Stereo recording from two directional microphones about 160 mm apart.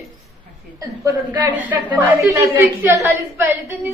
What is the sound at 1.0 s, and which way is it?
Speech, 25° right (ahead or behind).